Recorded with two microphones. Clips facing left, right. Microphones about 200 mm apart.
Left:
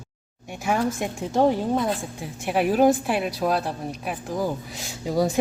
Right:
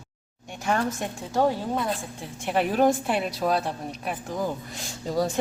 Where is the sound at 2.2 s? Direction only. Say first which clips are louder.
Left 2 dB; 5° left (ahead or behind).